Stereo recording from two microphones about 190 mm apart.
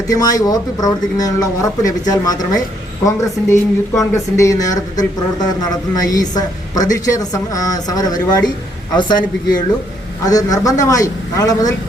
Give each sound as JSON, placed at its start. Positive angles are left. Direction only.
{"t": 0.1, "sound": "speech", "side_deg": 20}
{"t": 10.2, "sound": "a man's voice", "side_deg": 20}